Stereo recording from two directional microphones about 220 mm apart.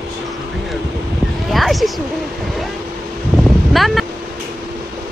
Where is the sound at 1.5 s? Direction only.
Centre (ahead or behind).